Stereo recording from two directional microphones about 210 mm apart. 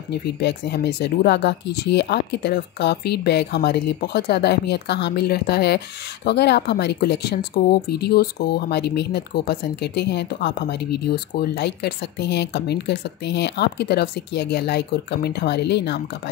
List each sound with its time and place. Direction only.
0.1 s speech: 55° left (ahead or behind)